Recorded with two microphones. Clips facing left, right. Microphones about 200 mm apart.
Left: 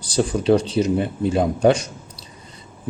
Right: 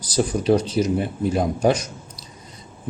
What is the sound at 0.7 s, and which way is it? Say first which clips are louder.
Speech: left 1 dB; 25° left (ahead or behind).